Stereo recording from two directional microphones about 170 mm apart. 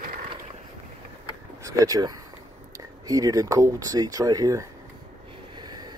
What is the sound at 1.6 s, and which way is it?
Speech, 20° right (ahead or behind).